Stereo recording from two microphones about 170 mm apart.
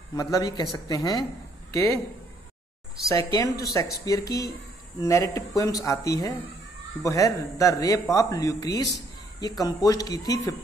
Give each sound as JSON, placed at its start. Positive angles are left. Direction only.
{"t": 0.1, "sound": "speech", "side_deg": 20}
{"t": 3.1, "sound": "speech", "side_deg": 20}